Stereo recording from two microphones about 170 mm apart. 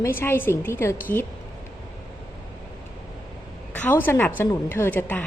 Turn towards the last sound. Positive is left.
turn(degrees=10)  # may be behind; listen again after turning